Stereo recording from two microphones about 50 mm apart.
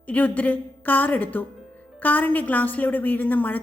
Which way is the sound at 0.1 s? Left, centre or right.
Left.